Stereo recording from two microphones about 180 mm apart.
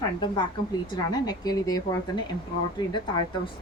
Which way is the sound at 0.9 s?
20° left (ahead or behind).